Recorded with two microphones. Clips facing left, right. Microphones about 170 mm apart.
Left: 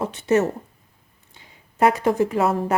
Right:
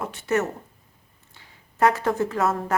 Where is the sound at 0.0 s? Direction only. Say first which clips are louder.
Left 5 dB; 20° left (ahead or behind).